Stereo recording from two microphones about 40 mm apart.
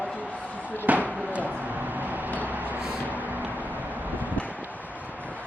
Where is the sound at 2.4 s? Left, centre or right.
Right.